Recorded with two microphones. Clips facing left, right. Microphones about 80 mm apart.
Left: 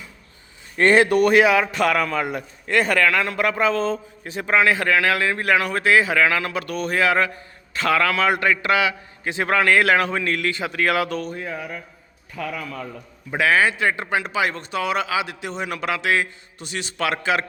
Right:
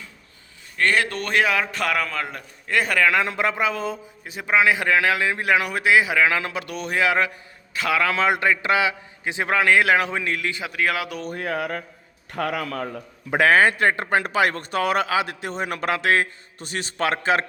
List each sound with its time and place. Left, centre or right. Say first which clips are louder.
0.8 s a man's voice: left 7 dB; left; by 3.1 s centre
3.1 s a man's voice: even; right
3.6 s a man's voice: left 4 dB; centre
8.0 s a man's voice: left 1 dB; right
10.6 s a man's voice: left 4 dB; centre
11.3 s a sound: right 4 dB; right
12.3 s a man's voice: right 4 dB; right